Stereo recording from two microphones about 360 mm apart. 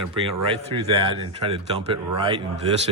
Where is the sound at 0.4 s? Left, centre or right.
Centre.